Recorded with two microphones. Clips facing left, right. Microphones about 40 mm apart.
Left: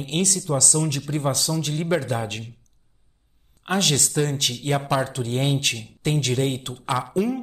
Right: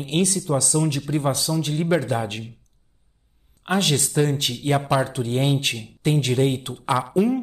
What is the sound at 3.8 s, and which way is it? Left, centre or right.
Speech, centre.